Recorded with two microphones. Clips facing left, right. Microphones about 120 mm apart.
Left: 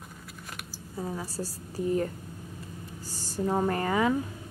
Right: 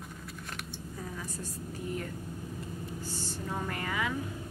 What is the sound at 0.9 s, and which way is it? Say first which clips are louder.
A woman's voice: left 8 dB; 30° left (ahead or behind).